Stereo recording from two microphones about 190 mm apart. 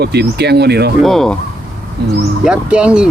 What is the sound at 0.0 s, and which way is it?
Speech, 60° right (ahead or behind).